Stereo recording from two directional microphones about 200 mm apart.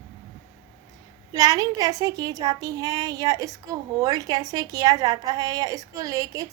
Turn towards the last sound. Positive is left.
turn(degrees=-15)  # may be behind; listen again after turning